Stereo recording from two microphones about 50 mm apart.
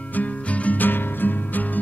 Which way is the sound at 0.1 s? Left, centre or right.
Left.